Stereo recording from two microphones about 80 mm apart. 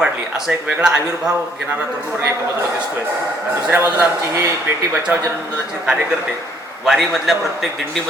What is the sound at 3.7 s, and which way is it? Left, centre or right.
Speech, centre.